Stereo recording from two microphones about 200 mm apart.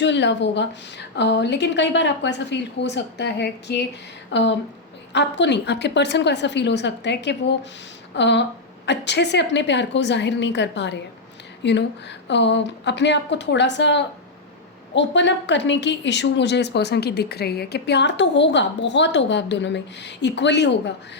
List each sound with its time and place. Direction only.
0.0 s a woman's voice: 60° left (ahead or behind)